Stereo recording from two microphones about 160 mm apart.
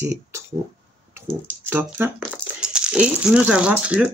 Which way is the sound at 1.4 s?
15° right (ahead or behind).